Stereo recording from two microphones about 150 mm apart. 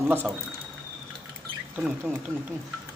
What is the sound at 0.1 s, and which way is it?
Speech, 15° right (ahead or behind).